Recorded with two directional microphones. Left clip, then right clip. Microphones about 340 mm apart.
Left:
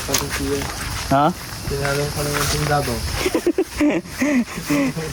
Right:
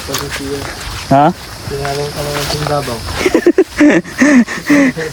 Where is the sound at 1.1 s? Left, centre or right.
Right.